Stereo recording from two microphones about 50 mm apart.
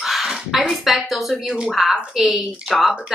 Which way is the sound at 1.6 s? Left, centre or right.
Centre.